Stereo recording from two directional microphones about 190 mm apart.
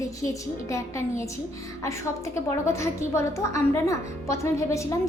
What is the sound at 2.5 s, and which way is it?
A woman's voice, 15° left (ahead or behind).